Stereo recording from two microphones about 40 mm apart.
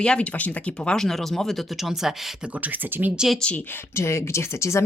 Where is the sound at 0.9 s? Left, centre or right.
Centre.